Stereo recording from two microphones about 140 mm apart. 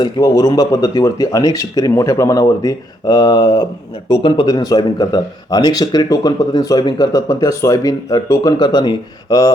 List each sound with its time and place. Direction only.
0.0 s speech: 25° left (ahead or behind)